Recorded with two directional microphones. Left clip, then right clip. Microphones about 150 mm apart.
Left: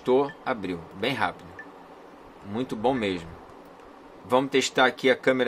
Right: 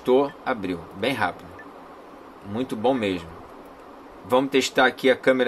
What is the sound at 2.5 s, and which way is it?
Speech, 20° left (ahead or behind).